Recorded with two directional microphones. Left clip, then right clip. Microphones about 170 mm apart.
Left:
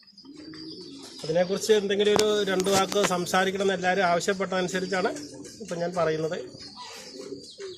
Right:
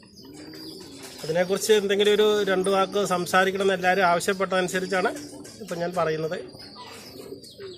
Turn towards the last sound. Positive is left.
turn(degrees=-5)  # may be behind; listen again after turning